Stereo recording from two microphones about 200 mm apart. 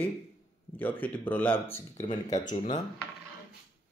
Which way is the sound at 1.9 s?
35° left (ahead or behind).